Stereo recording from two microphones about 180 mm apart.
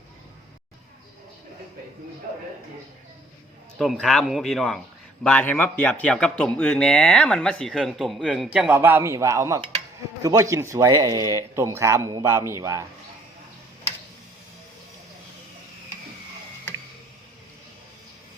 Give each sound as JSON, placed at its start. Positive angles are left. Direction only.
{"t": 3.8, "sound": "speech", "side_deg": 0}